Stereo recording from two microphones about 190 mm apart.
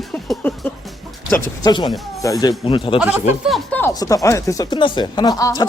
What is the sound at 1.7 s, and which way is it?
Speech, 25° left (ahead or behind).